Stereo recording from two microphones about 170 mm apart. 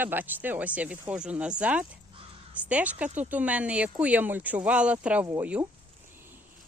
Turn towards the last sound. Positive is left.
turn(degrees=-10)  # may be behind; listen again after turning